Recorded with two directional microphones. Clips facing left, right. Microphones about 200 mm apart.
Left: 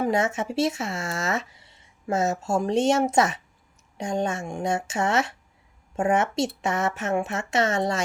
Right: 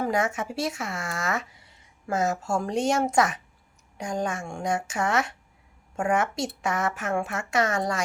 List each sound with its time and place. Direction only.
0.0 s speech: 25° left (ahead or behind)